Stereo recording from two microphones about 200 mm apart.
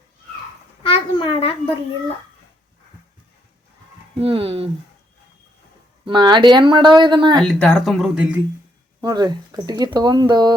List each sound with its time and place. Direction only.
0.8 s a sound: 25° left (ahead or behind)
4.2 s speech: 30° right (ahead or behind)
6.1 s speech: 25° right (ahead or behind)
7.3 s speech: 5° left (ahead or behind)
9.0 s speech: 20° right (ahead or behind)